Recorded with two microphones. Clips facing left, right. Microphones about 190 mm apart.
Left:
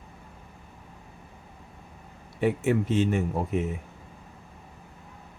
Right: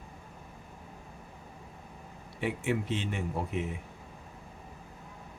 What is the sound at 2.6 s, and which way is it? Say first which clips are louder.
Speech: left 7 dB; 45° left (ahead or behind).